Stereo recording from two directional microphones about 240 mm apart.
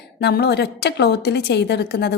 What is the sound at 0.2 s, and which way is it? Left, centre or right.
A woman's voice, left.